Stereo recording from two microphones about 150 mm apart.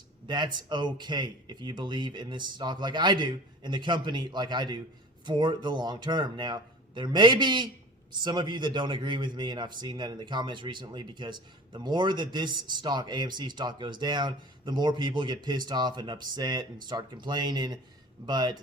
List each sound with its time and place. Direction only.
0.3 s a man's voice: 30° right (ahead or behind)